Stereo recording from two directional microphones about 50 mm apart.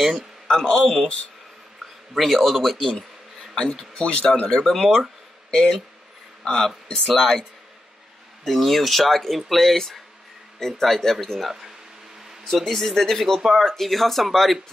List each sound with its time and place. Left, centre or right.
0.0 s a sound: centre
0.6 s speech: centre
2.1 s speech: centre
3.5 s speech: centre
6.4 s speech: centre
8.5 s speech: centre